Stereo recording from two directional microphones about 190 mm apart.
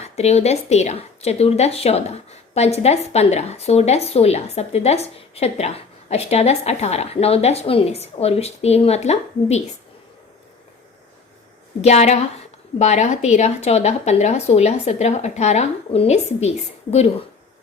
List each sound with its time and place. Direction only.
0.0 s speech: 35° left (ahead or behind)
11.8 s speech: 35° left (ahead or behind)